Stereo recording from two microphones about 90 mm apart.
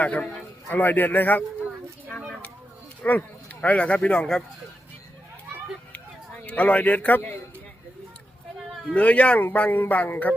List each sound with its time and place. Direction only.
0.0 s a man's voice: 15° left (ahead or behind)
3.0 s speech: 20° left (ahead or behind)
6.4 s a man's voice: 15° left (ahead or behind)
9.0 s a man's voice: 15° left (ahead or behind)